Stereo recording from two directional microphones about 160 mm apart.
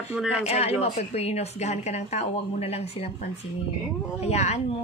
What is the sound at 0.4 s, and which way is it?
Speech, 40° left (ahead or behind).